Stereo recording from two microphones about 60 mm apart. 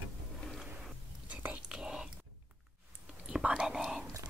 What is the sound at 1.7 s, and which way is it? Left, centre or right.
Whispering, centre.